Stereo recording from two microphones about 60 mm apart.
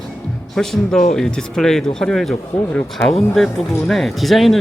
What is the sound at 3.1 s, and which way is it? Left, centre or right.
Speech, centre.